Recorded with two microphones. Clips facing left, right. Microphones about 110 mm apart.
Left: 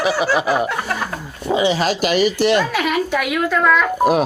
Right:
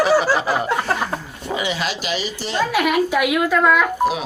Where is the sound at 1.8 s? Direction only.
45° left (ahead or behind); by 2.6 s 65° left (ahead or behind).